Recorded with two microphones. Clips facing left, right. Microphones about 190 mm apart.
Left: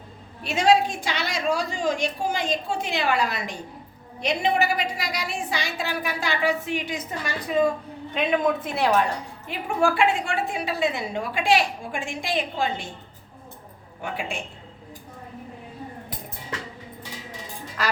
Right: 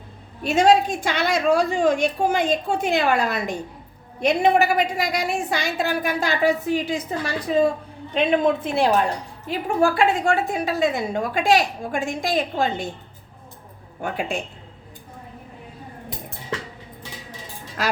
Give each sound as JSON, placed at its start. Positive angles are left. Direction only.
{"t": 0.4, "sound": "a woman's voice", "side_deg": -45}
{"t": 14.0, "sound": "a woman's voice", "side_deg": -40}